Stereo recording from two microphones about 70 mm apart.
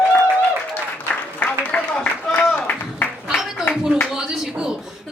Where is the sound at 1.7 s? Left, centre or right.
Centre.